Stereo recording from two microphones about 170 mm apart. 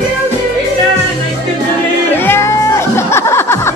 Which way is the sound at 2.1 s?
15° left (ahead or behind).